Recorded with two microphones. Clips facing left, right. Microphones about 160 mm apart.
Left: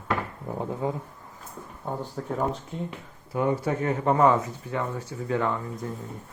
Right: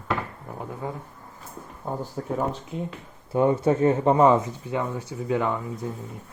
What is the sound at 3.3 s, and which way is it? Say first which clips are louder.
Speech: right 5 dB; 25° right (ahead or behind).